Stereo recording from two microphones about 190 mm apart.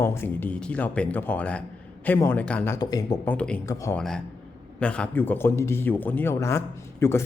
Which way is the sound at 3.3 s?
5° left (ahead or behind).